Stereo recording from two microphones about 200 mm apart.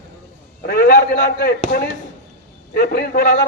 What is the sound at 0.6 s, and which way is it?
A man's voice, 50° left (ahead or behind).